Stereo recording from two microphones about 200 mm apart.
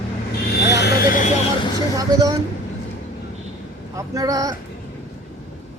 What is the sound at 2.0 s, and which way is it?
Speech, 20° right (ahead or behind).